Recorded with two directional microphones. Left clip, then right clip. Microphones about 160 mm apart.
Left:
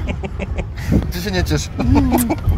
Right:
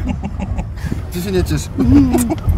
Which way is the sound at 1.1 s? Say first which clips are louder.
Right 1 dB; 55° left (ahead or behind).